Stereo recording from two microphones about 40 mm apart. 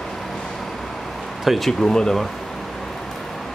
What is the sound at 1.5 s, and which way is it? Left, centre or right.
Speech, centre.